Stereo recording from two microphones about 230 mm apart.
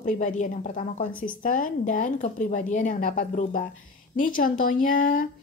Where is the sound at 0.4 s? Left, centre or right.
Left.